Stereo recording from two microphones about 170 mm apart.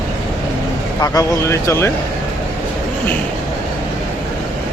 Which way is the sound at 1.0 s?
20° left (ahead or behind).